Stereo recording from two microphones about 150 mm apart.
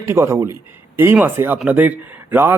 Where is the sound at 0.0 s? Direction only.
20° right (ahead or behind).